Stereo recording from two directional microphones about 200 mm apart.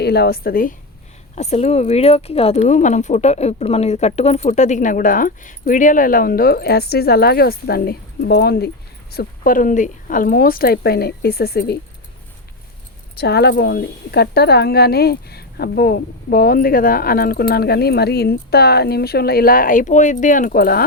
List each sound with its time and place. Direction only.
0.0 s speech: 55° left (ahead or behind)
1.4 s speech: 35° left (ahead or behind); by 11.8 s 55° left (ahead or behind)
13.1 s speech: 55° left (ahead or behind)